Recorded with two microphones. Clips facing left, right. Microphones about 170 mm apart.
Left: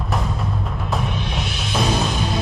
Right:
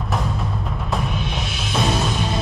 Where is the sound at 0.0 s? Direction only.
Centre (ahead or behind).